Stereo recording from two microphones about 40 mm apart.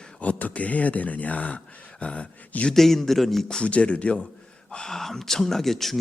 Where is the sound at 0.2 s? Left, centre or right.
Left.